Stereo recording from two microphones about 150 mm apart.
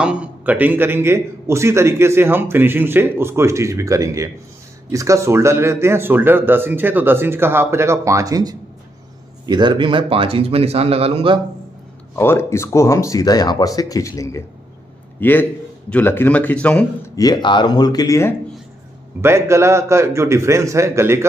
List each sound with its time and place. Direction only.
0.0 s a man's voice: 10° right (ahead or behind); by 11.3 s 40° right (ahead or behind)
12.2 s a man's voice: 15° left (ahead or behind)
17.1 s speech: 25° left (ahead or behind)
19.2 s a man's voice: 20° right (ahead or behind)